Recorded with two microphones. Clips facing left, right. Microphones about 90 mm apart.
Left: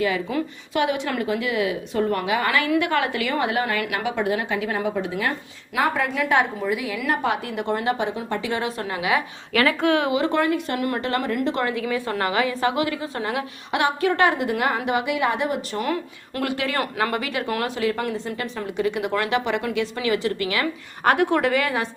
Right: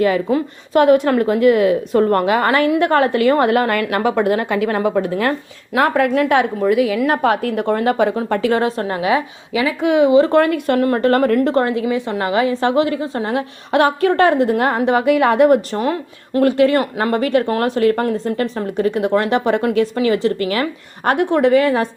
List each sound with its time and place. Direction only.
0.0 s a woman's voice: 45° right (ahead or behind)
8.6 s speech: 40° right (ahead or behind)
9.5 s speech: 10° right (ahead or behind)
10.1 s speech: 35° right (ahead or behind)
10.3 s a woman's voice: 60° right (ahead or behind)
10.8 s speech: 45° right (ahead or behind)
15.7 s speech: 30° right (ahead or behind)